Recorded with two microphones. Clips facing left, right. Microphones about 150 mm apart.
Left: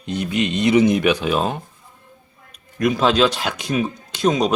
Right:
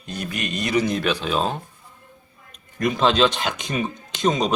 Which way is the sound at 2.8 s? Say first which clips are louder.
Left 2 dB; 5° left (ahead or behind).